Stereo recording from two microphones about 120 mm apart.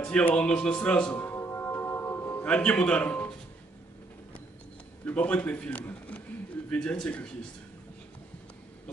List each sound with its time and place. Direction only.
0.0 s music: 10° left (ahead or behind)
2.4 s a man's voice: 10° left (ahead or behind)
5.0 s a man's voice: 10° left (ahead or behind)